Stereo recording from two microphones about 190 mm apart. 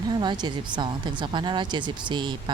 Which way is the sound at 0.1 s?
20° right (ahead or behind).